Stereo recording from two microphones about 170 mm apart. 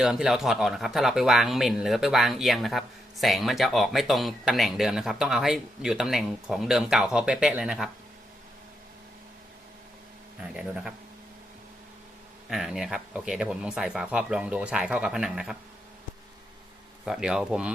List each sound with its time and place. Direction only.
0.0 s speech: 5° right (ahead or behind)
10.5 s speech: 5° right (ahead or behind)
12.5 s speech: centre (ahead or behind)
17.1 s speech: 5° right (ahead or behind)